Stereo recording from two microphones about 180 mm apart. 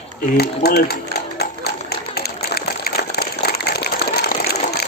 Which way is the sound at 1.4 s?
65° left (ahead or behind).